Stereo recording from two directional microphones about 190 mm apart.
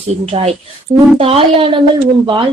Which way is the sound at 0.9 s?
30° right (ahead or behind).